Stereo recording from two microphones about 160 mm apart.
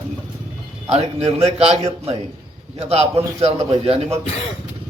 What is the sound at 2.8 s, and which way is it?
A man's voice, 40° right (ahead or behind).